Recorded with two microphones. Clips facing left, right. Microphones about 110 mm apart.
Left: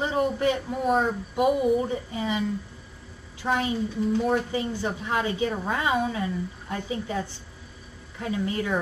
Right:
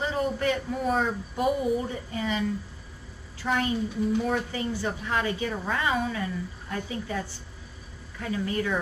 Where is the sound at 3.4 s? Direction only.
20° left (ahead or behind).